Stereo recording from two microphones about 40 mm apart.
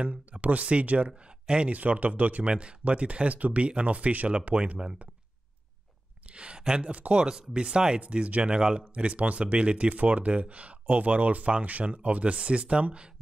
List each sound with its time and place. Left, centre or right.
0.0 s speech: right
6.3 s a sound: right
6.8 s speech: right
7.2 s speech: centre
8.5 s speech: centre
8.9 s speech: right